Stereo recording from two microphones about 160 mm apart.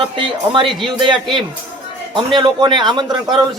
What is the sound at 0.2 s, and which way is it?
Speech, 30° right (ahead or behind).